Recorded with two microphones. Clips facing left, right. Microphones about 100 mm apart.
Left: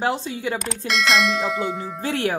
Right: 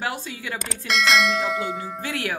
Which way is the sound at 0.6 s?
Centre (ahead or behind).